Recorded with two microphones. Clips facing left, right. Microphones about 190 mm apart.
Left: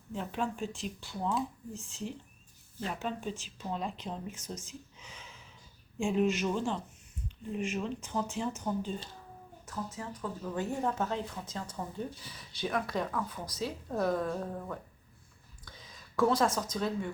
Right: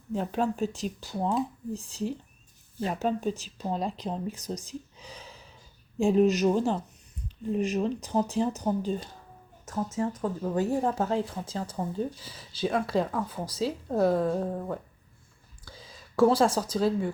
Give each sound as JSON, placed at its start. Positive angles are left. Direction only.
{"t": 0.1, "sound": "speech", "side_deg": -40}